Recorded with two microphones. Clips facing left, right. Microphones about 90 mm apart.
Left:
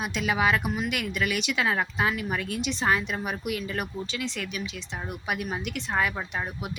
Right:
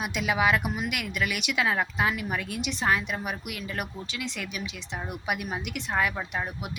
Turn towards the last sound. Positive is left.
turn(degrees=-10)  # may be behind; listen again after turning